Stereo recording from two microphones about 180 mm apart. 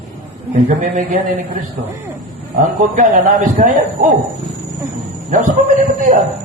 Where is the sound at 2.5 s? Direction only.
45° right (ahead or behind).